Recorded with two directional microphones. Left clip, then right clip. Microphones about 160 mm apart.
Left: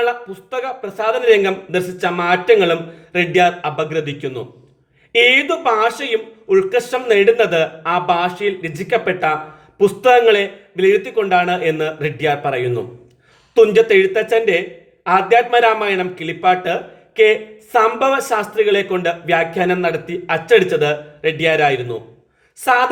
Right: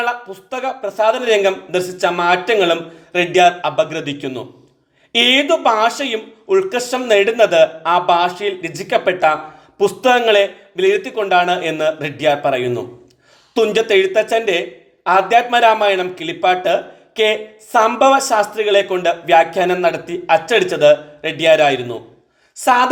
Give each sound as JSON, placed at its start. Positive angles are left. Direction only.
{"t": 0.0, "sound": "a man's voice", "side_deg": -30}